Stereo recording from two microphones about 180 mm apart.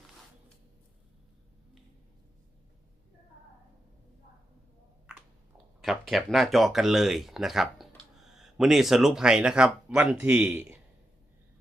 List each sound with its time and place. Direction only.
5.8 s speech: centre (ahead or behind)